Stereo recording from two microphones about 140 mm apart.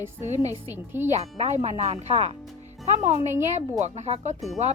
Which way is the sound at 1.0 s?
50° right (ahead or behind).